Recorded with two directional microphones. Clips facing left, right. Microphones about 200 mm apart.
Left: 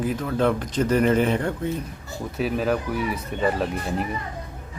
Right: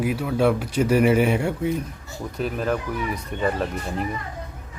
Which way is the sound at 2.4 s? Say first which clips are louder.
Left 2 dB; 5° left (ahead or behind).